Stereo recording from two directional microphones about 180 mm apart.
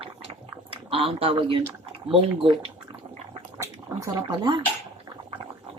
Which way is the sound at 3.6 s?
20° right (ahead or behind).